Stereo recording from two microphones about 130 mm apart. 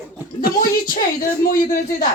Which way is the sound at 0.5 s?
90° left.